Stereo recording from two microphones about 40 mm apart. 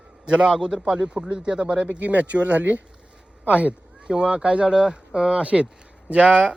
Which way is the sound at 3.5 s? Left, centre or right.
Right.